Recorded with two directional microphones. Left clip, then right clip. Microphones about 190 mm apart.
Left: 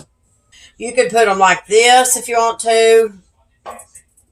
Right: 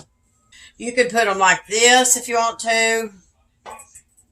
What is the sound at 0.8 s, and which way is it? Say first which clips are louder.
Speech: left 5 dB; 40° right (ahead or behind).